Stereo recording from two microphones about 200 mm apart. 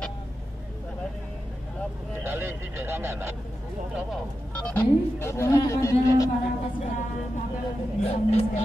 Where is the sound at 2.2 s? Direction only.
10° right (ahead or behind).